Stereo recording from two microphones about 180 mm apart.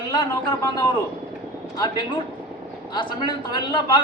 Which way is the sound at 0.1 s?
25° left (ahead or behind).